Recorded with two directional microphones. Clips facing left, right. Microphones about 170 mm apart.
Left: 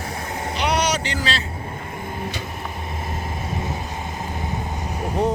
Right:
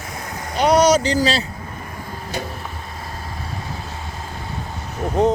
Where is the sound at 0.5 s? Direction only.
45° right (ahead or behind).